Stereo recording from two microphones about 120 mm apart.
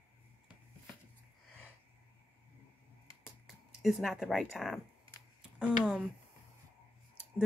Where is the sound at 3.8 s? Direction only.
Centre (ahead or behind).